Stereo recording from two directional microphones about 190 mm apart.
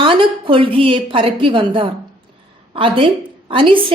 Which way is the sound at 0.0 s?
25° right (ahead or behind).